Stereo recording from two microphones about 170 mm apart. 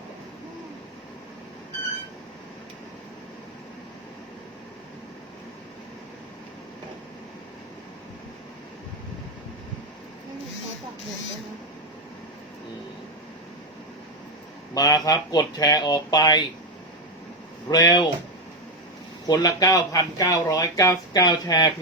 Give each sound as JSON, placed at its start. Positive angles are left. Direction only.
{"t": 14.7, "sound": "speech", "side_deg": 20}
{"t": 17.7, "sound": "speech", "side_deg": 25}
{"t": 19.3, "sound": "speech", "side_deg": 20}